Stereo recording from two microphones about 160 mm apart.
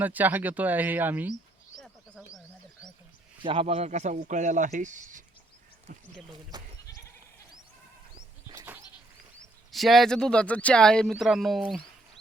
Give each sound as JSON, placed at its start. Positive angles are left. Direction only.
{"t": 0.0, "sound": "speech", "side_deg": -10}
{"t": 1.8, "sound": "a sound", "side_deg": -5}
{"t": 3.4, "sound": "speech", "side_deg": -35}
{"t": 6.5, "sound": "goat", "side_deg": -25}
{"t": 9.7, "sound": "speech", "side_deg": 0}